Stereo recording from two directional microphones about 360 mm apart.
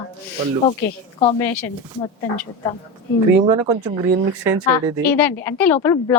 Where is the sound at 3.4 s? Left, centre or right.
Centre.